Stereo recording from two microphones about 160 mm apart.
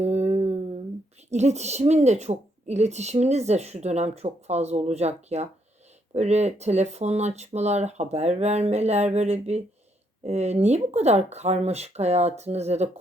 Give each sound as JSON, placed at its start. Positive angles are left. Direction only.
{"t": 0.0, "sound": "humming", "side_deg": -40}
{"t": 1.3, "sound": "speech", "side_deg": -45}